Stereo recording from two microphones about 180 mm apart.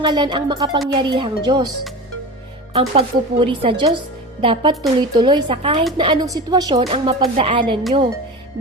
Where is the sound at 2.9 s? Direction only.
30° right (ahead or behind).